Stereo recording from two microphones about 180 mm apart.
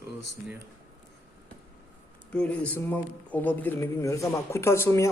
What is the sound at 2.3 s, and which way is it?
A man's voice, 5° left (ahead or behind).